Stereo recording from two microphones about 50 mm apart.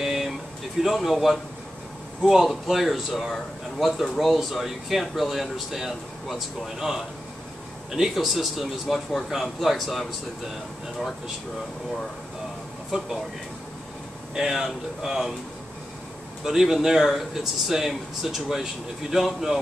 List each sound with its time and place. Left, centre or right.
0.0 s a sound: centre
0.8 s speech: centre
8.1 s speech: centre
12.9 s speech: centre
14.3 s speech: centre
16.4 s speech: centre